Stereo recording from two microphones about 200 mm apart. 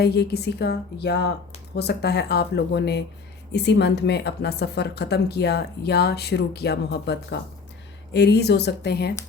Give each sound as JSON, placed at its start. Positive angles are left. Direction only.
{"t": 0.0, "sound": "a woman's voice", "side_deg": 55}